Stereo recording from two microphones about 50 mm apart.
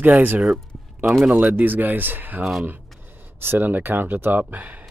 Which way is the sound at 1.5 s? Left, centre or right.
Right.